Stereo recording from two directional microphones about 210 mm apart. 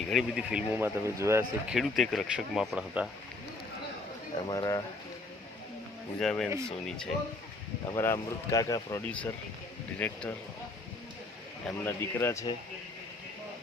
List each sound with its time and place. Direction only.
0.0 s speech: centre (ahead or behind)
4.4 s speech: 20° left (ahead or behind)
6.1 s speech: 5° left (ahead or behind)
11.6 s speech: 10° left (ahead or behind)